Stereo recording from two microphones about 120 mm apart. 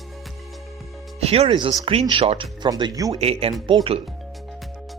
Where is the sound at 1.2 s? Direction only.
55° right (ahead or behind).